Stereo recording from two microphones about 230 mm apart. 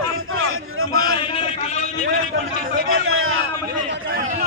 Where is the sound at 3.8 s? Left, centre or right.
Right.